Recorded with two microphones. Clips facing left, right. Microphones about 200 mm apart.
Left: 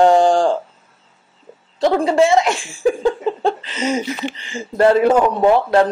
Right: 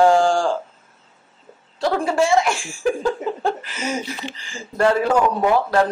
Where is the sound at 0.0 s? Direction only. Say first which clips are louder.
Left 3 dB; 20° left (ahead or behind).